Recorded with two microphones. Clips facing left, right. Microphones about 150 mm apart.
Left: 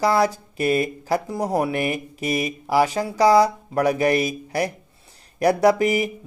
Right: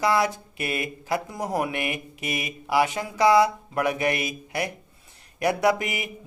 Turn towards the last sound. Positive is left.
turn(degrees=35)  # may be behind; listen again after turning